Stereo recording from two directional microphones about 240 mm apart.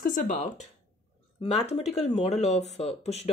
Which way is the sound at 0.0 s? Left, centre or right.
Left.